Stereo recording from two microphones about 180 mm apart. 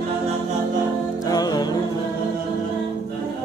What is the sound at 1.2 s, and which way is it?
Music, 20° left (ahead or behind).